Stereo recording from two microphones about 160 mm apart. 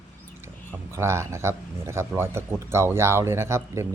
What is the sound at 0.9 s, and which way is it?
Speech, 15° right (ahead or behind).